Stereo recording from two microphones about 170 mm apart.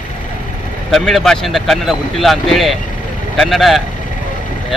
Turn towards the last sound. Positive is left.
turn(degrees=0)  # may be behind; listen again after turning